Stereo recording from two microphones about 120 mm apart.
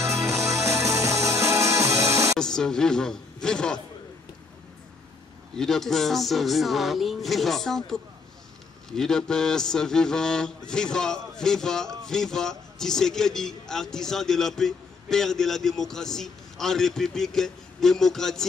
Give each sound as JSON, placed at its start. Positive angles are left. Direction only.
{"t": 0.0, "sound": "music", "side_deg": -25}
{"t": 2.3, "sound": "a man's voice", "side_deg": 5}
{"t": 5.6, "sound": "a man's voice", "side_deg": 5}